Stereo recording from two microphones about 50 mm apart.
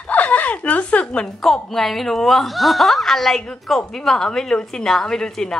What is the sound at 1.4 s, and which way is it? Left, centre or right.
A woman's voice, centre.